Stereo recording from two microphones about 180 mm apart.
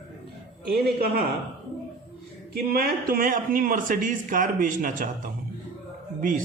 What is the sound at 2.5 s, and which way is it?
Speech, 60° right (ahead or behind).